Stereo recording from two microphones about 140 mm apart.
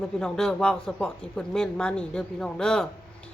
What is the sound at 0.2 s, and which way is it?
Speech, 5° left (ahead or behind).